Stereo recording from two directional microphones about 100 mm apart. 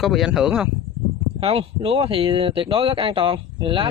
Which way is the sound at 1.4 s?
65° right (ahead or behind).